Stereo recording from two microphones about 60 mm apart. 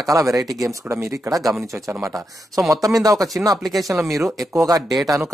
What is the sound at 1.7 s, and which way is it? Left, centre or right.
Speech, right.